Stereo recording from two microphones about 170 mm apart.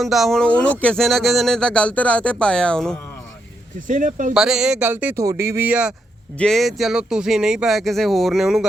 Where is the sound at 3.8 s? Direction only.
50° right (ahead or behind).